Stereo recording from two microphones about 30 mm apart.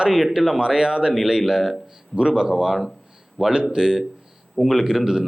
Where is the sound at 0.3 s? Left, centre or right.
Right.